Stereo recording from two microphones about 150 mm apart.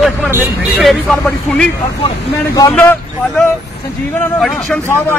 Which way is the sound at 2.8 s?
10° left (ahead or behind).